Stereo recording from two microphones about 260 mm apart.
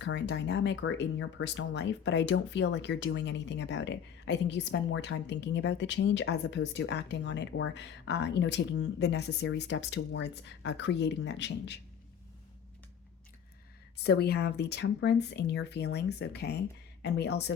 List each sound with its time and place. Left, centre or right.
0.0 s speech: left
13.9 s speech: left